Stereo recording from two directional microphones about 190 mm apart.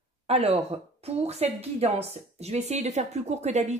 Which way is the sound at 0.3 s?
35° right (ahead or behind).